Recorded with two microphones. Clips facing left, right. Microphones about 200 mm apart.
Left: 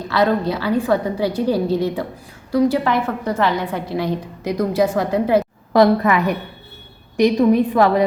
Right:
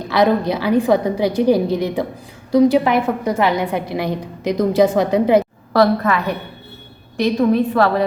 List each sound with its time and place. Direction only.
0.1 s a woman's voice: 15° right (ahead or behind)
5.7 s a woman's voice: 15° left (ahead or behind)